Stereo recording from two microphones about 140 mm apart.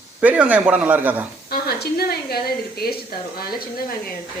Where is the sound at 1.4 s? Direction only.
90° left.